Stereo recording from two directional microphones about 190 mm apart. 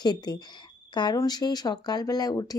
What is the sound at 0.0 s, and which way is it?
A woman's voice, 20° left (ahead or behind).